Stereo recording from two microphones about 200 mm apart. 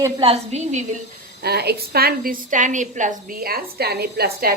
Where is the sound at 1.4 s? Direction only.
55° right (ahead or behind).